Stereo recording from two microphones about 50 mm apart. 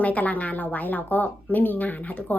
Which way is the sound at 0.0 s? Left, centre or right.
Left.